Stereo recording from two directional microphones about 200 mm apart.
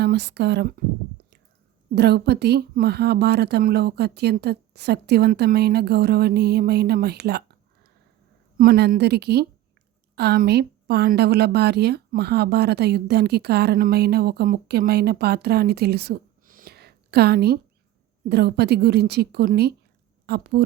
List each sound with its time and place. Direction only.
0.0 s a woman's voice: 55° right (ahead or behind)
2.0 s a woman's voice: 55° right (ahead or behind)
8.5 s a woman's voice: 50° right (ahead or behind)